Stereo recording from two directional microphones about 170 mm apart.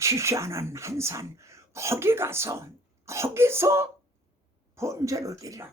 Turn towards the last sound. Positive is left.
turn(degrees=-20)  # may be behind; listen again after turning